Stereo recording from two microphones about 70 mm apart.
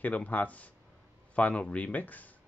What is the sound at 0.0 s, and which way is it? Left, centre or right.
Speech, left.